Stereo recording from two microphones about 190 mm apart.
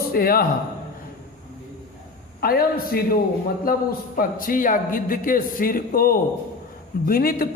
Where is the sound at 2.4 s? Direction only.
55° left (ahead or behind).